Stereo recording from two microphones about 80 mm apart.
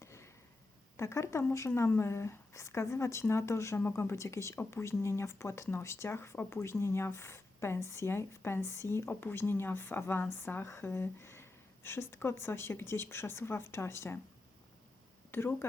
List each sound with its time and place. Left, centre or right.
0.0 s a sound: left
0.9 s speech: left
15.3 s speech: left